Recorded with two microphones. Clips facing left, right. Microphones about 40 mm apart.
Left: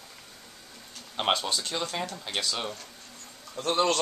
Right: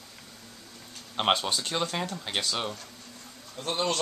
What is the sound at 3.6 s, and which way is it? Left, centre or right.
Speech, left.